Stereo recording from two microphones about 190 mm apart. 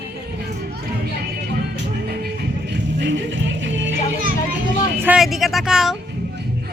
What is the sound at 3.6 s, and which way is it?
Music, 70° right (ahead or behind).